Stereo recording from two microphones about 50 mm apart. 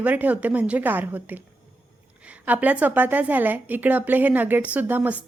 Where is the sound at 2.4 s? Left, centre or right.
Right.